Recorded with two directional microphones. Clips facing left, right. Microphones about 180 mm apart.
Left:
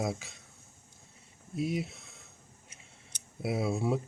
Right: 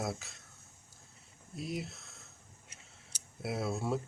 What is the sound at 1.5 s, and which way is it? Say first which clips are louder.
Speech: left 7 dB; centre (ahead or behind).